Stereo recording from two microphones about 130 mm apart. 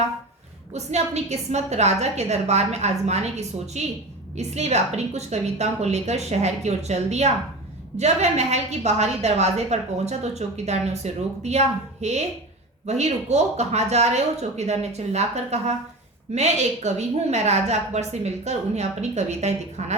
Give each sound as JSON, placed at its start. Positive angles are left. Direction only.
{"t": 0.7, "sound": "a woman's voice", "side_deg": -60}